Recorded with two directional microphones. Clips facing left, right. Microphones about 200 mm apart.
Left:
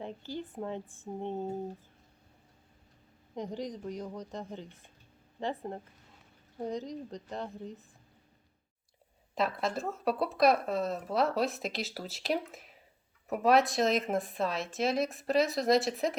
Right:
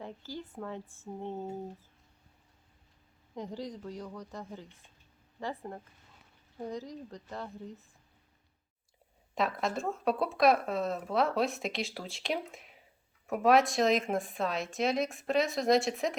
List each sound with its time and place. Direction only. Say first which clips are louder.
0.0 s speech: left 3 dB; 15° left (ahead or behind)
3.3 s a woman's voice: left 2 dB; 20° left (ahead or behind)
9.3 s speech: even; centre (ahead or behind)